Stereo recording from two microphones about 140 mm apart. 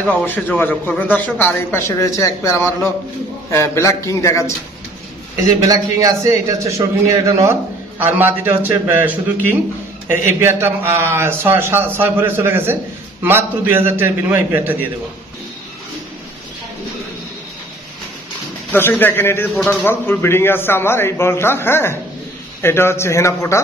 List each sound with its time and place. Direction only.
0.0 s a man's voice: 10° left (ahead or behind)
5.7 s a man's voice: 25° right (ahead or behind)
18.7 s a man's voice: 15° left (ahead or behind)